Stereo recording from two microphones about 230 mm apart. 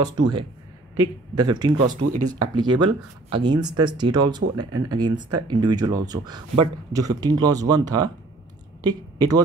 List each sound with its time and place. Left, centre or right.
0.0 s speech: centre
1.9 s speech: right
2.3 s speech: centre